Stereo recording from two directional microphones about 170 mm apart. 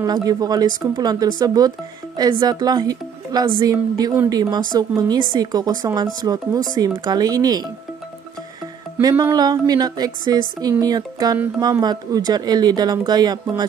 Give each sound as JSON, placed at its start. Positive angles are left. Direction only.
{"t": 0.0, "sound": "speech", "side_deg": -20}
{"t": 9.0, "sound": "speech", "side_deg": -20}